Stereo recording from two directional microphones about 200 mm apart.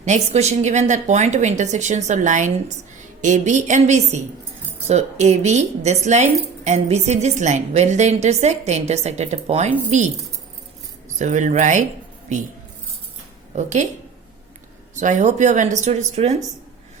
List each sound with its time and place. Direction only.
0.0 s a woman's voice: 35° right (ahead or behind)
11.2 s a woman's voice: 35° right (ahead or behind)
13.6 s a woman's voice: 35° right (ahead or behind)
14.9 s a woman's voice: 40° right (ahead or behind)